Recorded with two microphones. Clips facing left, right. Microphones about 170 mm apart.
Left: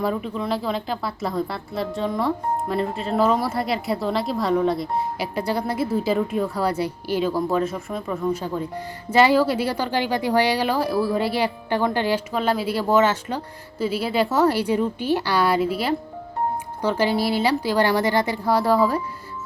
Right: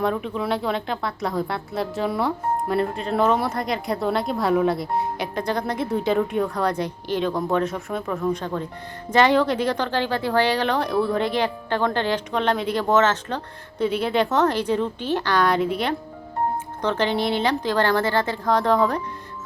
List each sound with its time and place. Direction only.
0.0 s speech: centre (ahead or behind)